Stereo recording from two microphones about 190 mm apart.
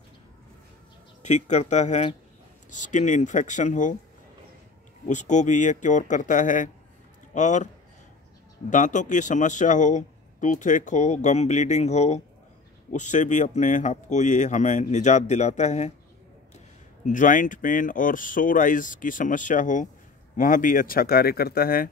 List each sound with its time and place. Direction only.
1.2 s speech: 35° left (ahead or behind)
5.0 s speech: 40° left (ahead or behind)